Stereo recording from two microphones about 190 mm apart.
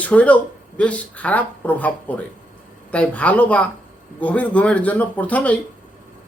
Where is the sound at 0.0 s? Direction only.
5° left (ahead or behind).